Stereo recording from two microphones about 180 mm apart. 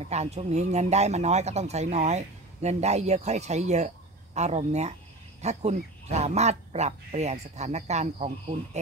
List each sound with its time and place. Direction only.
0.0 s speech: 35° right (ahead or behind)